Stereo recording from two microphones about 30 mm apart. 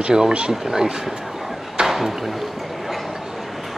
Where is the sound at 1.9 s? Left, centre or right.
Centre.